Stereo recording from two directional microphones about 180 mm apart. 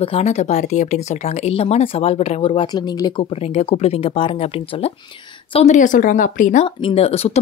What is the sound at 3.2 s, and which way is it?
Speech, 35° left (ahead or behind).